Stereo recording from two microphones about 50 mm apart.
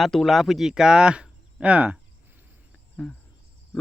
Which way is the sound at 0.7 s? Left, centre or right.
Centre.